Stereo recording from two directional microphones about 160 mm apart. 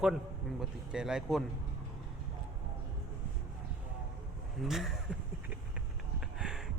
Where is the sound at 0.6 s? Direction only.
5° right (ahead or behind).